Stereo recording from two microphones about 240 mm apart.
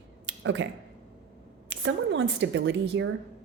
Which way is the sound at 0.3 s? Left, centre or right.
Right.